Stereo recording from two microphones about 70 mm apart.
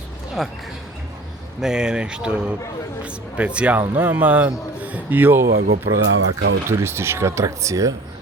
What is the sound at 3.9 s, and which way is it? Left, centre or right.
A man's voice, right.